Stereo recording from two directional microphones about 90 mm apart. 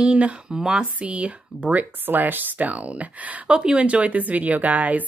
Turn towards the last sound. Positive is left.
turn(degrees=-15)  # may be behind; listen again after turning